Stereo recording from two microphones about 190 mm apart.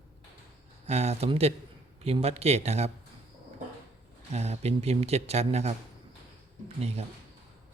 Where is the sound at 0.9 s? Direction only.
35° right (ahead or behind).